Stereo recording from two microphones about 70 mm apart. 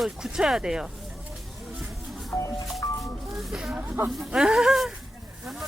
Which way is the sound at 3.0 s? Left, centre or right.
Centre.